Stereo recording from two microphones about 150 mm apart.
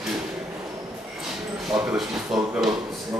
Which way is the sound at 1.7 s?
5° right (ahead or behind).